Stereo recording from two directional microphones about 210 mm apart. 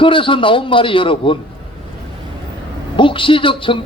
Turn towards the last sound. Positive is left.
turn(degrees=25)  # may be behind; listen again after turning